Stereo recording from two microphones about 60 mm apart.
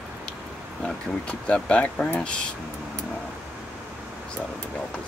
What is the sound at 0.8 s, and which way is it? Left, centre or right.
Speech, centre.